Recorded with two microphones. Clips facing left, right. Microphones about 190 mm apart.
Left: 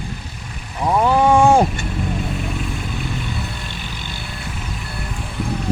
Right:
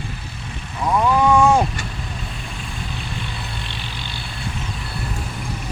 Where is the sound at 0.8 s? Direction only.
25° left (ahead or behind).